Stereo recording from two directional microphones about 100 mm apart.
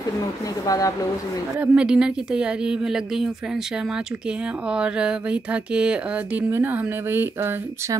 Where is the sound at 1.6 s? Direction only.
10° right (ahead or behind).